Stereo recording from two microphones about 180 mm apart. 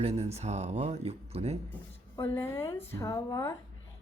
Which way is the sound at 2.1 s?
30° left (ahead or behind).